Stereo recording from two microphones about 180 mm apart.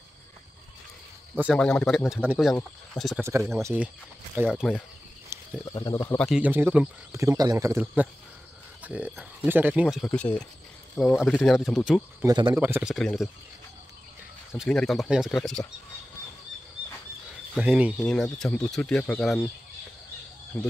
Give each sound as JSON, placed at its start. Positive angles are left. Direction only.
{"t": 1.3, "sound": "a man's voice", "side_deg": -10}
{"t": 1.6, "sound": "speech", "side_deg": 5}
{"t": 3.2, "sound": "speech", "side_deg": -15}
{"t": 5.3, "sound": "cricket", "side_deg": -15}
{"t": 5.7, "sound": "speech", "side_deg": 20}
{"t": 5.9, "sound": "speech", "side_deg": 10}
{"t": 12.2, "sound": "speech", "side_deg": -20}
{"t": 12.5, "sound": "speech", "side_deg": -10}
{"t": 12.9, "sound": "speech", "side_deg": 0}
{"t": 14.6, "sound": "speech", "side_deg": 0}
{"t": 17.6, "sound": "speech", "side_deg": -5}
{"t": 20.5, "sound": "speech", "side_deg": 5}